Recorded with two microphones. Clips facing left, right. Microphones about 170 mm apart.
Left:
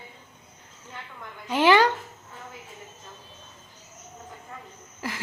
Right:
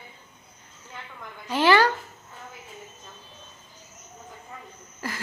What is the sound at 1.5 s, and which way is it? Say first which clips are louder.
Speech: left 1 dB; 15° left (ahead or behind).